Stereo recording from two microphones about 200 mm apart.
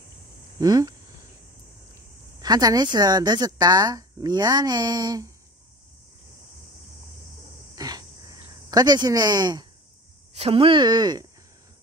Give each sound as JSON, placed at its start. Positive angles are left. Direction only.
{"t": 0.6, "sound": "speech", "side_deg": -20}
{"t": 2.4, "sound": "speech", "side_deg": -20}
{"t": 7.7, "sound": "a sound", "side_deg": -20}
{"t": 10.3, "sound": "speech", "side_deg": -30}